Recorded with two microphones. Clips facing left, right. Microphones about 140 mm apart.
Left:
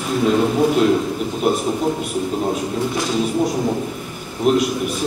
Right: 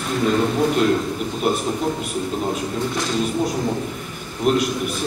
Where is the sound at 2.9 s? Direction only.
5° left (ahead or behind).